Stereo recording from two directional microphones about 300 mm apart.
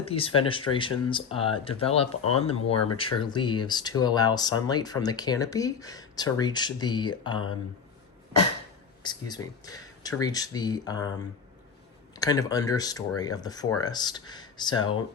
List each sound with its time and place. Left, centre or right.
0.1 s speech: centre
9.0 s speech: centre
12.1 s speech: centre